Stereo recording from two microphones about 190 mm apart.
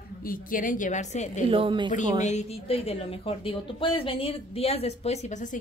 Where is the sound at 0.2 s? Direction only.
45° left (ahead or behind).